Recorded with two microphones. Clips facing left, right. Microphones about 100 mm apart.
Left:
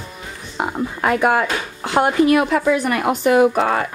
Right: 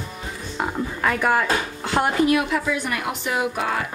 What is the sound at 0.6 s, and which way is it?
Speech, 20° left (ahead or behind).